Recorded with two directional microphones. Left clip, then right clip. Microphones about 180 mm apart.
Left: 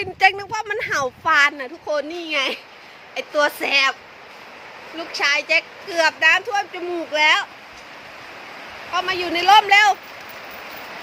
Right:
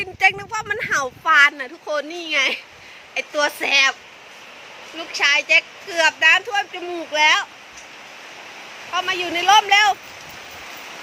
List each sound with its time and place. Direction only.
0.0 s speech: 20° left (ahead or behind)
0.5 s speech: 5° left (ahead or behind)
4.9 s speech: centre (ahead or behind)
8.9 s speech: centre (ahead or behind)